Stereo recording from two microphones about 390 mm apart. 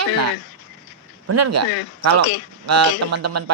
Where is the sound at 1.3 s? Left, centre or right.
Right.